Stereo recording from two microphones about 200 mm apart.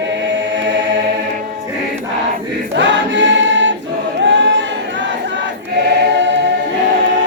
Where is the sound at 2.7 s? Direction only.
65° right (ahead or behind).